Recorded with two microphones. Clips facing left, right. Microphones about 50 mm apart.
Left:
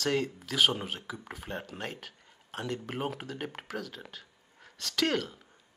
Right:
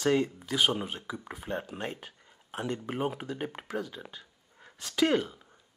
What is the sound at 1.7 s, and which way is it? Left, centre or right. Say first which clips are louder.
Speech: right 2 dB; centre.